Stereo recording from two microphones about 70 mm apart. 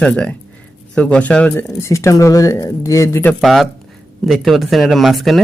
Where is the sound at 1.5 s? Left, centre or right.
Left.